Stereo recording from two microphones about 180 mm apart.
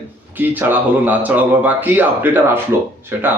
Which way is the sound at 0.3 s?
10° right (ahead or behind).